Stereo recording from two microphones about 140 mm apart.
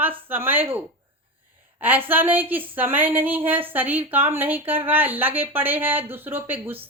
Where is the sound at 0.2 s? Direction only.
15° right (ahead or behind).